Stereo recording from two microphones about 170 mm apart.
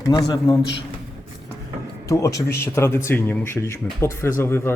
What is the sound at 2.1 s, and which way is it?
A man's voice, 20° left (ahead or behind).